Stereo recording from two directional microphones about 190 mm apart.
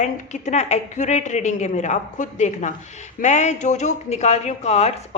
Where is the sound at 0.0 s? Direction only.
35° left (ahead or behind).